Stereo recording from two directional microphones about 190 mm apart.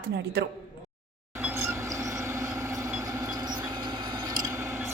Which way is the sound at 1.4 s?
15° right (ahead or behind).